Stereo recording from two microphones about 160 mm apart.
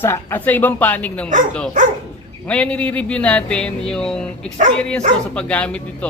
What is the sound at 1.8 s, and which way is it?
Speech, 55° right (ahead or behind).